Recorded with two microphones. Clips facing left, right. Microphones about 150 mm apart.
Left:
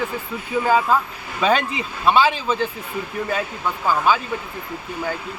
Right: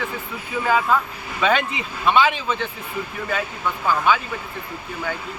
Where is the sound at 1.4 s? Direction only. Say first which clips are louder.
Left 1 dB; 35° left (ahead or behind).